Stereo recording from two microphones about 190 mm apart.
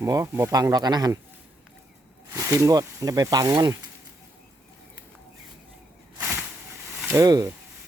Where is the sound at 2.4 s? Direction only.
15° right (ahead or behind).